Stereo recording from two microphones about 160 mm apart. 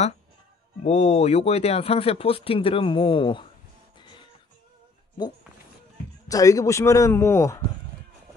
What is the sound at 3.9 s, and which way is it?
Music, 30° left (ahead or behind).